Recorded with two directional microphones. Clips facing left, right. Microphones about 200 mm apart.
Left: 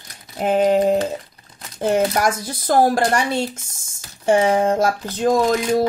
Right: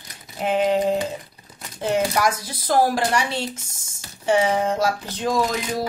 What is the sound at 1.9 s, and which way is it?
Speech, 50° left (ahead or behind).